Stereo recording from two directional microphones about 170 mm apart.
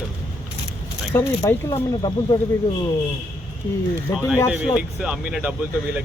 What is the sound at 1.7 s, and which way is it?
Speech, 30° left (ahead or behind).